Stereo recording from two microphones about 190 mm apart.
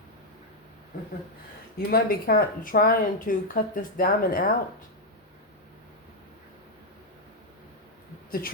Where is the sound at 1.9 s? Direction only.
50° left (ahead or behind).